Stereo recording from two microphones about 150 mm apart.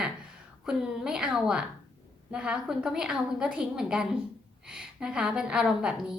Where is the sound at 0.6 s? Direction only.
5° right (ahead or behind).